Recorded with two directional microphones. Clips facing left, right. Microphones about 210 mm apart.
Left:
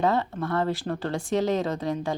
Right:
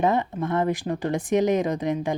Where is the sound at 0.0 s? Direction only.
15° right (ahead or behind).